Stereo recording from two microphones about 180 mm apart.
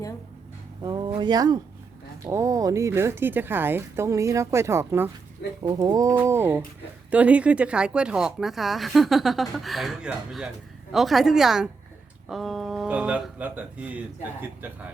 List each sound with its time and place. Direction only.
0.8 s speech: 25° right (ahead or behind)